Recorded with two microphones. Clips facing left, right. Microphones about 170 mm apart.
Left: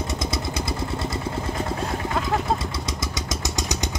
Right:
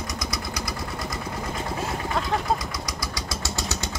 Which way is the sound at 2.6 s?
25° left (ahead or behind).